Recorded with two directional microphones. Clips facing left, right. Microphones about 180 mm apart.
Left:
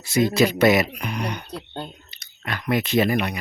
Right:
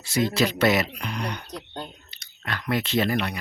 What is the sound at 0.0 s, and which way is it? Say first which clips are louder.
Speech: left 4 dB; 15° left (ahead or behind).